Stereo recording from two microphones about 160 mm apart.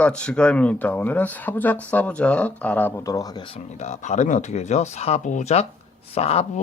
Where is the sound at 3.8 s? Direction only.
45° left (ahead or behind).